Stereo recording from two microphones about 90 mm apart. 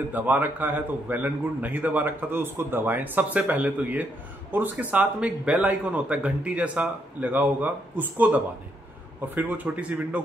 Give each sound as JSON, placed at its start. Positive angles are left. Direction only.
{"t": 0.1, "sound": "a man's voice", "side_deg": -20}